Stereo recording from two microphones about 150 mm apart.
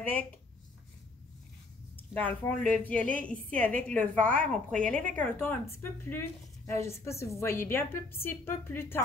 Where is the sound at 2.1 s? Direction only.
10° left (ahead or behind).